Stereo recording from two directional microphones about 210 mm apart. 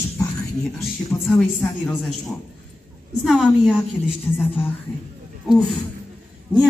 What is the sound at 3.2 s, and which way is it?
Speech, centre (ahead or behind).